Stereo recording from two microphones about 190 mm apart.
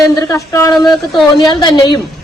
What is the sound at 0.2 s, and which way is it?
Speech, 15° left (ahead or behind).